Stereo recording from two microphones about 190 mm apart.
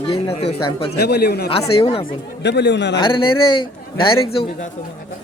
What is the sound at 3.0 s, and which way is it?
A man's voice, 25° left (ahead or behind).